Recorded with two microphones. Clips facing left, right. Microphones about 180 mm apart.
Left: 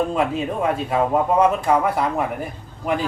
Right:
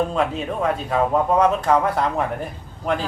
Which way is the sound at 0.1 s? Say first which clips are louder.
Left 1 dB; 10° left (ahead or behind).